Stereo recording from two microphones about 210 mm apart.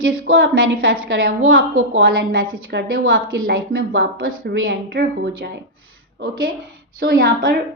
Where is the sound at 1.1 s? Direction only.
45° right (ahead or behind).